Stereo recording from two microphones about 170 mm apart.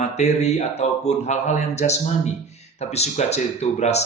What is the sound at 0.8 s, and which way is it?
Speech, 40° left (ahead or behind).